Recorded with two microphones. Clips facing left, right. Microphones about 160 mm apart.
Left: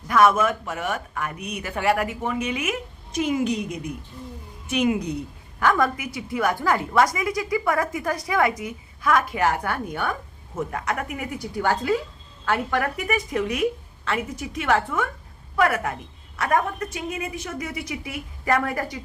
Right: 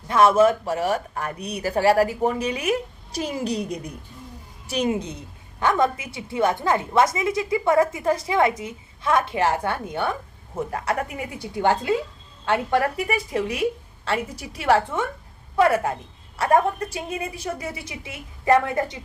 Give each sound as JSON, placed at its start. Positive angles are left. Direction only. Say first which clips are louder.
{"t": 0.1, "sound": "a woman's voice", "louder": "right 2 dB", "side_deg": -30}